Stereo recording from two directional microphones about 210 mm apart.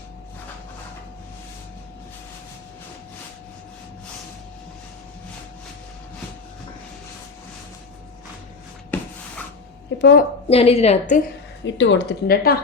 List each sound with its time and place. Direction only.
8.9 s a sound: 10° left (ahead or behind)
10.0 s a woman's voice: 50° left (ahead or behind)
10.5 s a woman's voice: 30° left (ahead or behind)
11.6 s a woman's voice: 60° left (ahead or behind)